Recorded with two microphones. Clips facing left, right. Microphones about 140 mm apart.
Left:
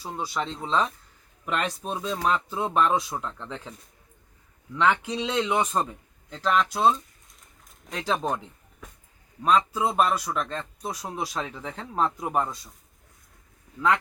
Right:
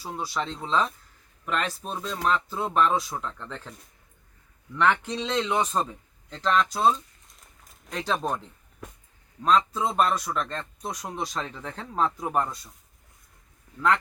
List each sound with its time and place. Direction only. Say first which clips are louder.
0.3 s a man's voice: even; centre (ahead or behind)
13.7 s speech: even; centre (ahead or behind)